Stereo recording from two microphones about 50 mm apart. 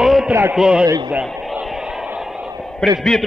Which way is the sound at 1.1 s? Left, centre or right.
Right.